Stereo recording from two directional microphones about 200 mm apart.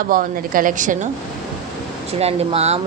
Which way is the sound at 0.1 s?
45° right (ahead or behind).